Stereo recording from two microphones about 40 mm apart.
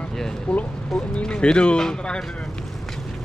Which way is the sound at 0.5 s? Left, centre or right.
Left.